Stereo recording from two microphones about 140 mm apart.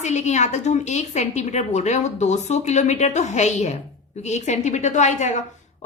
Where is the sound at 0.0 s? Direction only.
55° left (ahead or behind).